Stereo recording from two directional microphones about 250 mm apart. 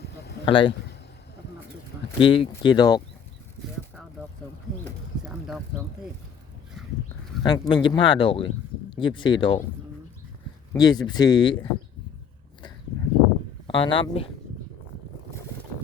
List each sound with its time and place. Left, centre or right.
0.4 s a man's voice: centre
2.1 s speech: left
7.4 s speech: centre
10.8 s speech: centre
13.7 s speech: centre